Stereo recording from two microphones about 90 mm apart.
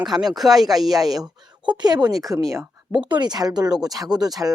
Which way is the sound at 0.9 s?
45° right (ahead or behind).